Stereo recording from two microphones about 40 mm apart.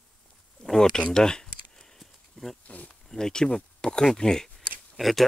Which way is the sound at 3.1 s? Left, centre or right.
Centre.